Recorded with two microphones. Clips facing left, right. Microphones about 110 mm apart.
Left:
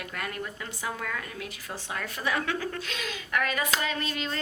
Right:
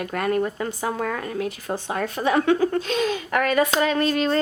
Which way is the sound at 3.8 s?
45° right (ahead or behind).